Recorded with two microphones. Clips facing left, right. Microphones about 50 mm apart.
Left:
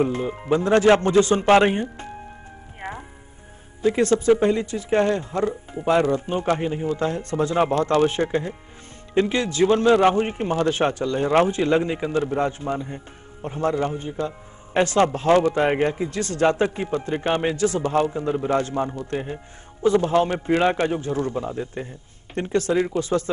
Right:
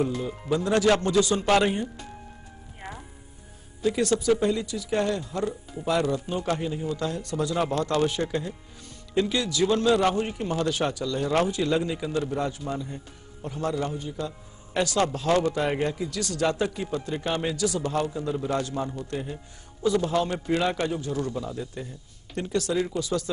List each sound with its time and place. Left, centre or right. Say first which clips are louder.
0.0 s a man's voice: left 5 dB; left
2.8 s music: left 6 dB; left
3.8 s a man's voice: left 5 dB; left